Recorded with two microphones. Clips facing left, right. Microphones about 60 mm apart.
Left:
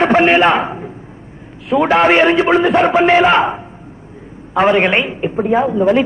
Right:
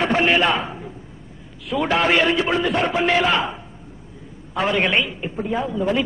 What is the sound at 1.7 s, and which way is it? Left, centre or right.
A man's voice, left.